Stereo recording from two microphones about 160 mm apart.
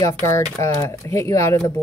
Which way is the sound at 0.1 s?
10° left (ahead or behind).